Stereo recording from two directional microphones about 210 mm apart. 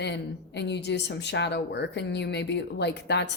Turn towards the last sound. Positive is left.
turn(degrees=55)  # may be behind; listen again after turning